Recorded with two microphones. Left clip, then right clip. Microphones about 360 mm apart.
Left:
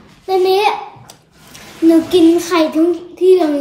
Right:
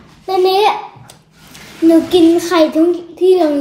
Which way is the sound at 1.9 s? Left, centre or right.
Centre.